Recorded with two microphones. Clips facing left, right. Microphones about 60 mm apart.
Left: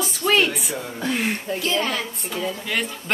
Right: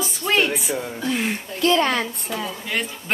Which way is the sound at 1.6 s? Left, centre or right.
Right.